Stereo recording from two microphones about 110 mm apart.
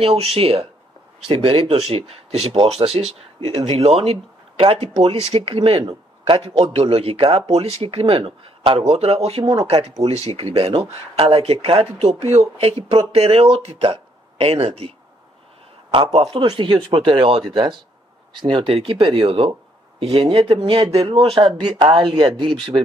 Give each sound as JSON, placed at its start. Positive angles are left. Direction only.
{"t": 0.0, "sound": "speech", "side_deg": -65}
{"t": 15.9, "sound": "speech", "side_deg": -60}
{"t": 16.3, "sound": "speech", "side_deg": -45}